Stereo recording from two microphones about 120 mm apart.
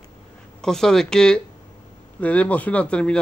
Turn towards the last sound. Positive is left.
turn(degrees=10)  # may be behind; listen again after turning